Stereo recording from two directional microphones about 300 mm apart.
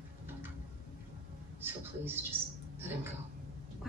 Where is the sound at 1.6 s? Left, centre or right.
Centre.